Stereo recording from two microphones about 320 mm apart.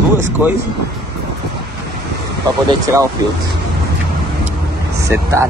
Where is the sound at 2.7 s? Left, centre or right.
Centre.